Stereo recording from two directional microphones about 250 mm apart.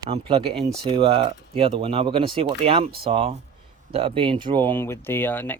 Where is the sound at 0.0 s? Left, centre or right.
Right.